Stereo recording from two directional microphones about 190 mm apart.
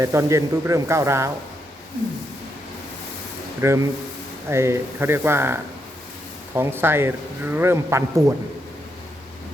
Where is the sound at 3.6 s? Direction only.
15° right (ahead or behind).